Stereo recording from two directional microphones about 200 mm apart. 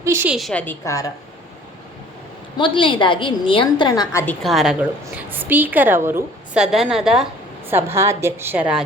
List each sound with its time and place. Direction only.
0.0 s a woman's voice: 10° right (ahead or behind)
0.3 s a woman's voice: 5° left (ahead or behind)
2.6 s a woman's voice: 25° left (ahead or behind)
4.4 s a woman's voice: centre (ahead or behind)